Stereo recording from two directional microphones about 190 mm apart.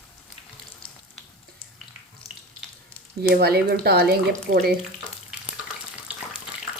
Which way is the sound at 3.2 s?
55° right (ahead or behind).